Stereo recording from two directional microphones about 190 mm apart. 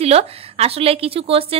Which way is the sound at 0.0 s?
35° right (ahead or behind).